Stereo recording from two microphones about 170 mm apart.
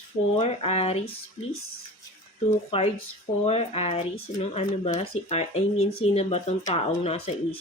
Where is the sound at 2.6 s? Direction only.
35° left (ahead or behind).